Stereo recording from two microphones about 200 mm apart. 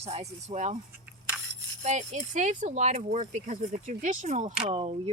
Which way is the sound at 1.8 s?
35° right (ahead or behind).